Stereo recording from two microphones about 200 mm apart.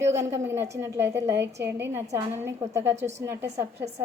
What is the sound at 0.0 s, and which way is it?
A woman's voice, 15° right (ahead or behind).